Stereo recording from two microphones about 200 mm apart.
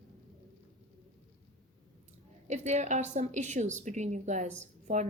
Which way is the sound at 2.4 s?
35° right (ahead or behind).